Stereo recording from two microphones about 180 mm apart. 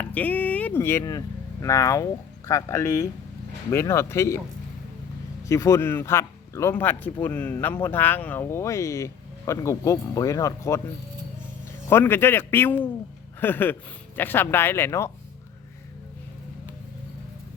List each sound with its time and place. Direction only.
0.0 s speech: 10° left (ahead or behind)
5.5 s speech: 15° left (ahead or behind)
11.9 s speech: 15° left (ahead or behind)